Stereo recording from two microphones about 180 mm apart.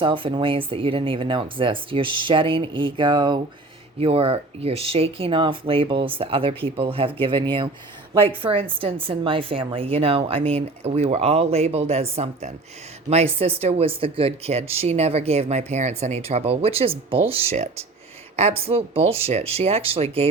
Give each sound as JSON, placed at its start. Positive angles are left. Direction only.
{"t": 0.0, "sound": "speech", "side_deg": -30}